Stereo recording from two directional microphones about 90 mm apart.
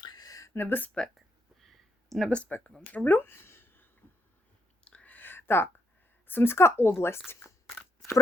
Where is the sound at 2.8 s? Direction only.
20° left (ahead or behind).